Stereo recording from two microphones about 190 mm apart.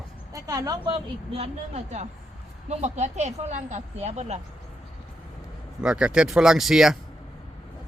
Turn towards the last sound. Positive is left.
turn(degrees=-5)  # may be behind; listen again after turning